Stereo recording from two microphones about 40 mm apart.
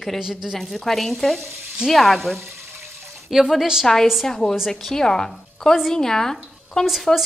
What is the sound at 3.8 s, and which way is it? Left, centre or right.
Speech, centre.